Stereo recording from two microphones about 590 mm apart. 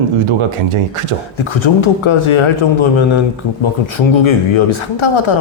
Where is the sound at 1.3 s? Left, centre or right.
Left.